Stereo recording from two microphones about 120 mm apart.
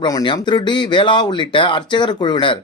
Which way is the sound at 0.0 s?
40° left (ahead or behind).